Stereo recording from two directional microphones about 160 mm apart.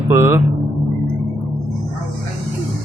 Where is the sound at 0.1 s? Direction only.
15° right (ahead or behind).